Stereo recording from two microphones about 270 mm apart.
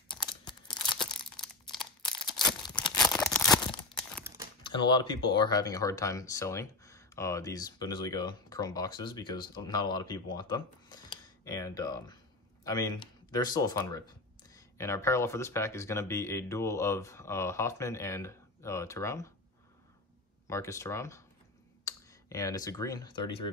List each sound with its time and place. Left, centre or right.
0.3 s crunch: centre
1.1 s a sound: centre
2.0 s a sound: centre
3.0 s crumpling: centre
4.6 s speech: centre
20.4 s speech: centre